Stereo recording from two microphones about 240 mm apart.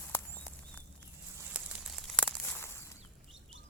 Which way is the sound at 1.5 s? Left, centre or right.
Centre.